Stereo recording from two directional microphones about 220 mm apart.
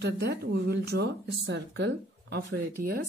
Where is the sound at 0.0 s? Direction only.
50° right (ahead or behind).